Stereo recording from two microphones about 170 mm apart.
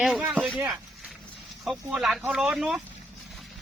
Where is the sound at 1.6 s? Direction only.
Centre (ahead or behind).